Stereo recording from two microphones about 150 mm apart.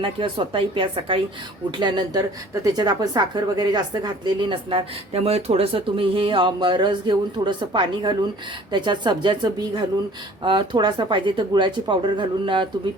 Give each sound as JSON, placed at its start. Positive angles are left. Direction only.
{"t": 0.0, "sound": "a woman's voice", "side_deg": -35}